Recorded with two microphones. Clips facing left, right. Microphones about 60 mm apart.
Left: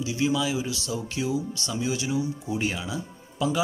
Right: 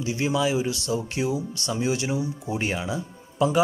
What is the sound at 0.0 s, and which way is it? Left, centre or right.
Speech, right.